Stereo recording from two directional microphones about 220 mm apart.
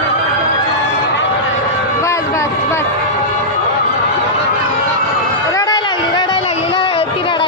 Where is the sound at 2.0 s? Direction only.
15° left (ahead or behind).